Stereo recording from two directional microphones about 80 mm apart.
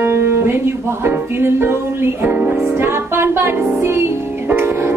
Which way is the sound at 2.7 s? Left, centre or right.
Right.